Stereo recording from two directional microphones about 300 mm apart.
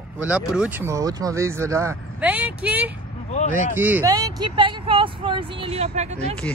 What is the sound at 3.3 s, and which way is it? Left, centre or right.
Speech, left.